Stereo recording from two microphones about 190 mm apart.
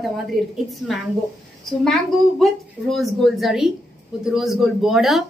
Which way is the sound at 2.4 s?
Centre (ahead or behind).